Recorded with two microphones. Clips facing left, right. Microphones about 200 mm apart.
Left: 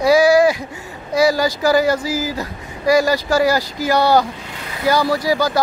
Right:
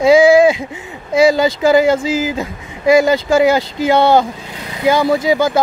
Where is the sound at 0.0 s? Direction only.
25° right (ahead or behind).